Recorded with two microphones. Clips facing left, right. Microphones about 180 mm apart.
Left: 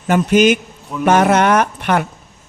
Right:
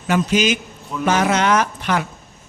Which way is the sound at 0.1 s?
55° left (ahead or behind).